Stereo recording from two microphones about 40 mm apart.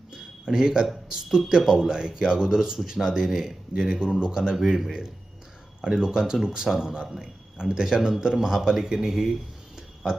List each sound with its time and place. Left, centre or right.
0.1 s a sound: centre
1.1 s a man's voice: centre
4.5 s speech: centre
4.8 s a man's voice: centre